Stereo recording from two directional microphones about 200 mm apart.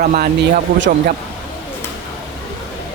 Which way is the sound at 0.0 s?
40° right (ahead or behind).